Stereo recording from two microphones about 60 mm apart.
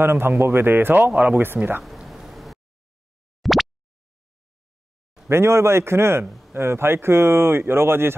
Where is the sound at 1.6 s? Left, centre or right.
Right.